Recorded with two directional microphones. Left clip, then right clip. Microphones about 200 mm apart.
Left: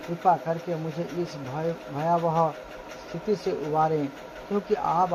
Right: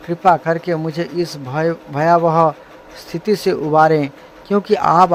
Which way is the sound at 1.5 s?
45° right (ahead or behind).